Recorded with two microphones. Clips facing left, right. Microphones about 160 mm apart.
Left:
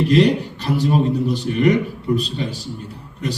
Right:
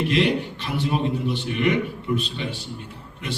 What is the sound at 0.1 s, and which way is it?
A man's voice, 40° left (ahead or behind).